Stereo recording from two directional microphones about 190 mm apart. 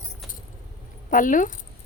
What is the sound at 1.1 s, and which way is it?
Speech, 45° left (ahead or behind).